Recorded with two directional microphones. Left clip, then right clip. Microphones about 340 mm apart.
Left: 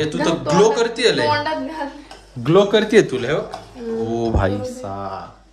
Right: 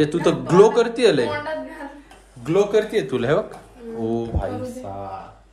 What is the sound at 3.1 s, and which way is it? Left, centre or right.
Speech, centre.